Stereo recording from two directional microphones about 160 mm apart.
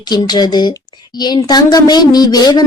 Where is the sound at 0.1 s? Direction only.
25° left (ahead or behind).